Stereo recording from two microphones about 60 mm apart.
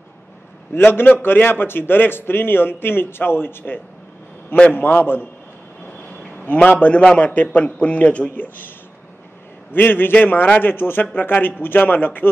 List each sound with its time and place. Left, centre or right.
0.7 s a man's voice: left
6.0 s a sound: left
7.2 s a man's voice: left